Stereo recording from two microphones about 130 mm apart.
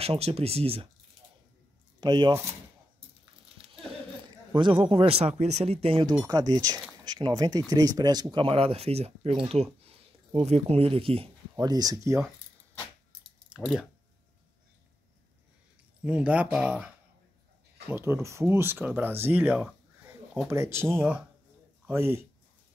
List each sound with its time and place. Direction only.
0.0 s speech: 50° right (ahead or behind)
2.0 s speech: 35° right (ahead or behind)
3.6 s a sound: 5° right (ahead or behind)
4.6 s speech: 40° right (ahead or behind)
6.2 s speech: 30° right (ahead or behind); by 11.2 s 45° right (ahead or behind)
11.5 s speech: 30° right (ahead or behind)
16.0 s speech: 10° right (ahead or behind)
17.8 s speech: 20° right (ahead or behind)
20.4 s speech: 20° right (ahead or behind)